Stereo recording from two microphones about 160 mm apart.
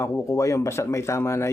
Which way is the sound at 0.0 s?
15° left (ahead or behind).